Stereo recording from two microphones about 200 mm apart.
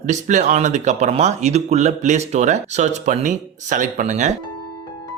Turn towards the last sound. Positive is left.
turn(degrees=-35)  # may be behind; listen again after turning